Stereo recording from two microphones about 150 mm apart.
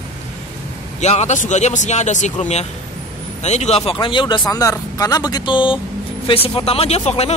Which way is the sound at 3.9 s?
35° left (ahead or behind).